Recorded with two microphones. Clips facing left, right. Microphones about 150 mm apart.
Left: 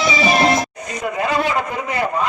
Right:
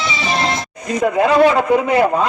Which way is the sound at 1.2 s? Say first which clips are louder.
Right 7 dB; 65° right (ahead or behind).